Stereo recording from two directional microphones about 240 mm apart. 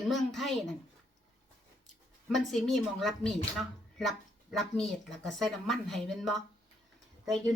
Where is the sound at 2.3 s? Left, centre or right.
Centre.